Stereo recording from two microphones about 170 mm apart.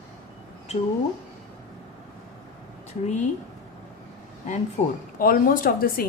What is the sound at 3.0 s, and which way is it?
Speech, 45° left (ahead or behind).